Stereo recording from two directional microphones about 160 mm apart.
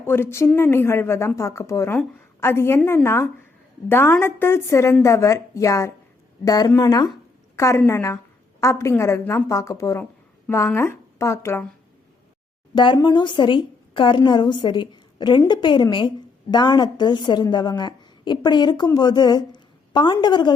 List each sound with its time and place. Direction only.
0.0 s a woman's voice: 15° left (ahead or behind)
12.7 s a woman's voice: 30° left (ahead or behind)